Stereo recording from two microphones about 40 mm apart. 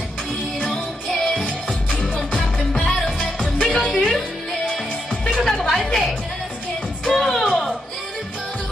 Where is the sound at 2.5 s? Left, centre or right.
Centre.